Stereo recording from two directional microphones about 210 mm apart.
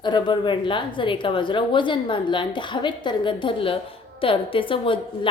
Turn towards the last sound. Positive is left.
turn(degrees=25)  # may be behind; listen again after turning